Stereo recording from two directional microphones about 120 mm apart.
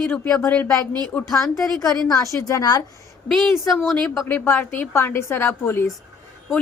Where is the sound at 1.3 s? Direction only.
25° left (ahead or behind).